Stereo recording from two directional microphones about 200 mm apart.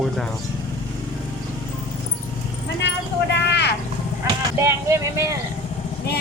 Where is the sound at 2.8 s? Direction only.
60° left (ahead or behind).